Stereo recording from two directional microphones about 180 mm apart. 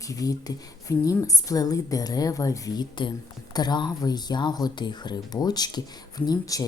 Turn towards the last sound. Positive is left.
turn(degrees=20)  # may be behind; listen again after turning